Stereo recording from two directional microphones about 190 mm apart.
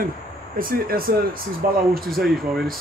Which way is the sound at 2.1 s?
Centre (ahead or behind).